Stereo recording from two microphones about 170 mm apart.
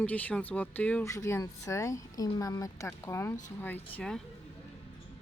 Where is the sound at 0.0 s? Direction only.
10° left (ahead or behind).